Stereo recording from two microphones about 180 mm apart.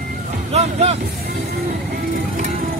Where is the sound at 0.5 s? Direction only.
35° right (ahead or behind).